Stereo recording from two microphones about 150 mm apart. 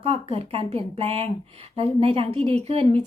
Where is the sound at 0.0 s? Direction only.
40° right (ahead or behind).